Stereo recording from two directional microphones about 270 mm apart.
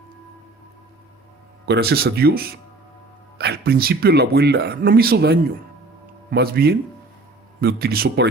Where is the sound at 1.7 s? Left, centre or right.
Right.